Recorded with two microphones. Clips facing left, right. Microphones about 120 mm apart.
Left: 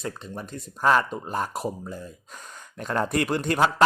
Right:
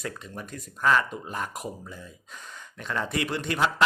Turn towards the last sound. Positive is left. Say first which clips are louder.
# left 4 dB
turn(degrees=45)  # may be behind; listen again after turning